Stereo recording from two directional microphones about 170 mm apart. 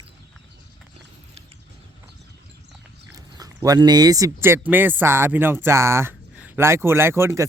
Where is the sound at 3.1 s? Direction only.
20° right (ahead or behind).